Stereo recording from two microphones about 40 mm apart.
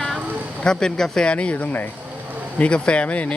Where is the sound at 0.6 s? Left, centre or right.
Centre.